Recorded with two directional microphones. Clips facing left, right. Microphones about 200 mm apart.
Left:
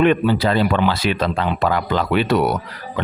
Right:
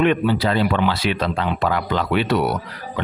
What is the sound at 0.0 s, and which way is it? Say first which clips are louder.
Speech: left 2 dB; 40° left (ahead or behind).